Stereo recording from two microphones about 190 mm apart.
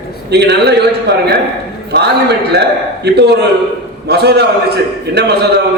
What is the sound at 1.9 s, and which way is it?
A man's voice, 60° right (ahead or behind).